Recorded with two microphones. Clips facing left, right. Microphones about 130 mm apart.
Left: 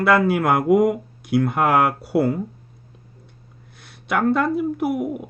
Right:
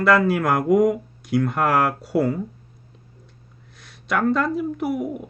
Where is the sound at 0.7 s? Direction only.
10° left (ahead or behind).